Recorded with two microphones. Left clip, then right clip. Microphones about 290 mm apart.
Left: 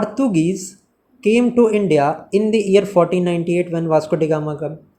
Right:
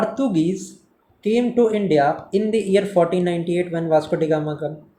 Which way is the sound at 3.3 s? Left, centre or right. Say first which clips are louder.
Left 3 dB; left.